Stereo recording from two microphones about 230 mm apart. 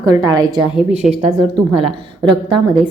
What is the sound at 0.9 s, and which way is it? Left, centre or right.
Speech, right.